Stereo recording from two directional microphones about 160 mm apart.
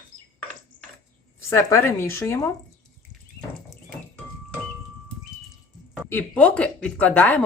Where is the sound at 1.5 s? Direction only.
20° left (ahead or behind).